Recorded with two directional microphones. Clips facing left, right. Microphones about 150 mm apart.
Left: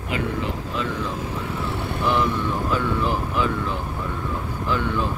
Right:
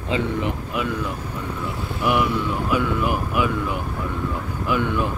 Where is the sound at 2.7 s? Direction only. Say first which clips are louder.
Right 3 dB; 15° right (ahead or behind).